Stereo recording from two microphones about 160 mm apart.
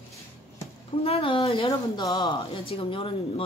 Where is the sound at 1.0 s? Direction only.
35° left (ahead or behind).